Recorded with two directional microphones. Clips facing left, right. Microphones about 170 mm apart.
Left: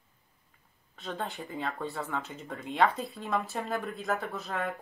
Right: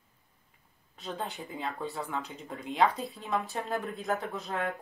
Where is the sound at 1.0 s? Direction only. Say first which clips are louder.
Left 1 dB; centre (ahead or behind).